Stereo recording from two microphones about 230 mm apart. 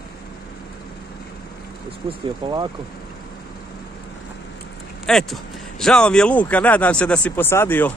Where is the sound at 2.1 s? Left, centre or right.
Centre.